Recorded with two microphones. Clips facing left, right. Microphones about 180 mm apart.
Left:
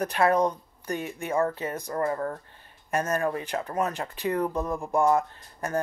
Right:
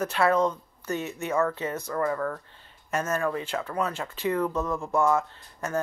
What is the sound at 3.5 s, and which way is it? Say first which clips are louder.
Speech: even; 35° left (ahead or behind).